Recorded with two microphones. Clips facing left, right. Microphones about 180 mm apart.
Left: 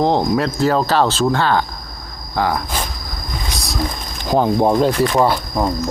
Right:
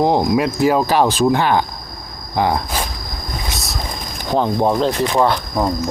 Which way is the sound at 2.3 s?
20° right (ahead or behind).